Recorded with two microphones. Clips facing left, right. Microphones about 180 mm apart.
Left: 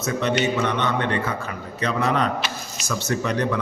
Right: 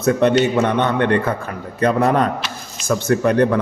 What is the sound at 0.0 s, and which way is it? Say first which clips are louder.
A man's voice: right 7 dB; 55° right (ahead or behind).